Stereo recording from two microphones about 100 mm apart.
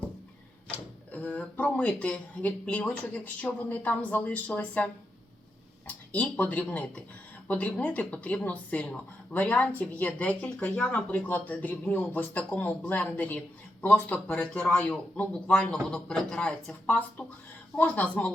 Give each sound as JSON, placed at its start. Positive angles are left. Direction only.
{"t": 1.1, "sound": "speech", "side_deg": 15}
{"t": 6.1, "sound": "speech", "side_deg": 15}